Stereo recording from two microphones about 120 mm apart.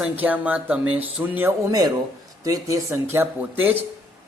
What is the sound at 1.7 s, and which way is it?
Speech, 30° right (ahead or behind).